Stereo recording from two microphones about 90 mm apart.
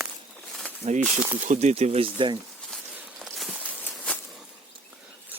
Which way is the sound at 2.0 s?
75° right (ahead or behind).